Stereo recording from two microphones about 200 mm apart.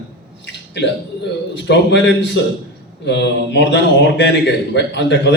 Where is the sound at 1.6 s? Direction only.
60° left (ahead or behind).